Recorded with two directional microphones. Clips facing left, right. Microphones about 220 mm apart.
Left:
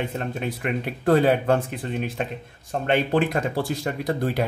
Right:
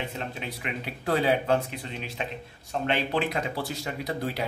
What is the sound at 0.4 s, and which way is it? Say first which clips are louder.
A man's voice: left 8 dB; 50° left (ahead or behind).